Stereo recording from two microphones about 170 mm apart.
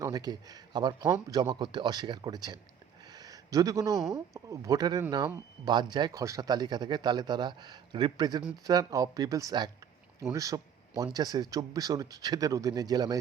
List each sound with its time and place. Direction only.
0.0 s speech: 25° right (ahead or behind)
3.1 s a sound: 20° right (ahead or behind)
4.1 s speech: 20° right (ahead or behind)